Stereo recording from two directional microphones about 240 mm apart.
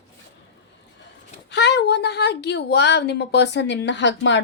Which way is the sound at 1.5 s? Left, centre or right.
Left.